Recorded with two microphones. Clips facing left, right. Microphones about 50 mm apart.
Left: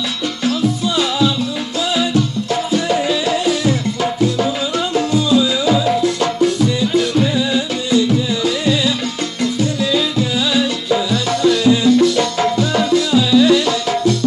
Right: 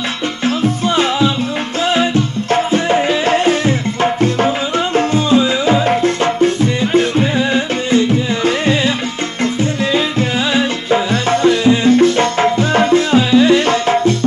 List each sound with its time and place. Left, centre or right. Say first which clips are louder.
0.8 s music: right 4 dB; right